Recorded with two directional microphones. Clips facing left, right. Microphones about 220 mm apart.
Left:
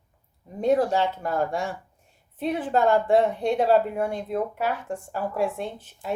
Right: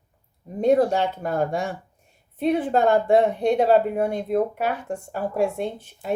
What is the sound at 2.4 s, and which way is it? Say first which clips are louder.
Speech: right 6 dB; 55° right (ahead or behind).